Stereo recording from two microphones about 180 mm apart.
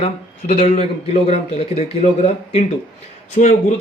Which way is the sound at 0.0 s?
40° left (ahead or behind).